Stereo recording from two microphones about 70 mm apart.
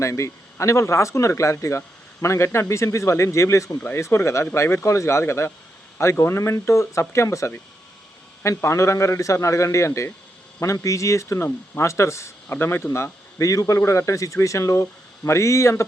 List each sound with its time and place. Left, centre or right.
0.0 s speech: left
3.9 s speech: left
12.5 s speech: left
13.5 s speech: left